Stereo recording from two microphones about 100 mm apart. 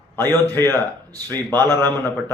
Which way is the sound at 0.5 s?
20° left (ahead or behind).